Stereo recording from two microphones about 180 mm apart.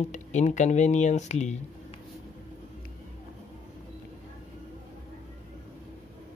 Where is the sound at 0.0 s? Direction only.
40° left (ahead or behind).